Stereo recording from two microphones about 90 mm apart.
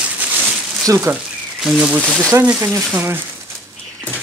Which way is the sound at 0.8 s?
35° right (ahead or behind).